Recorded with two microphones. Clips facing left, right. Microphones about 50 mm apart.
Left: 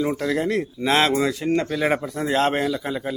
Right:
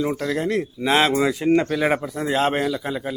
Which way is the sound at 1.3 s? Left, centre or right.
Centre.